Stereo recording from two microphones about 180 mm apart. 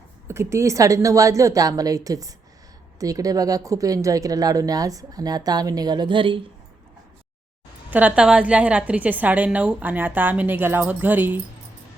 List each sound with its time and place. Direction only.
0.3 s a woman's voice: 15° right (ahead or behind)
7.9 s a woman's voice: 10° right (ahead or behind)